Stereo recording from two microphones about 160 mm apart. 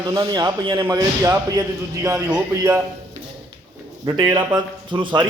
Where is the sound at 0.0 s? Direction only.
25° right (ahead or behind).